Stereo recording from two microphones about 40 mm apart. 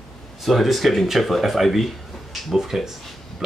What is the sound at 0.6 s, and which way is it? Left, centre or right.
Speech, centre.